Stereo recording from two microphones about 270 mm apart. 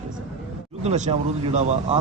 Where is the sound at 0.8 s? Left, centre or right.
Right.